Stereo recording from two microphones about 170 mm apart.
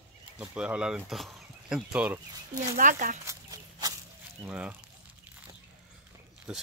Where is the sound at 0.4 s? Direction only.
5° right (ahead or behind).